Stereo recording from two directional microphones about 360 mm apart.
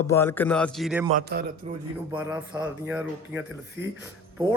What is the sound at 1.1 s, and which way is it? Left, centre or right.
Speech, right.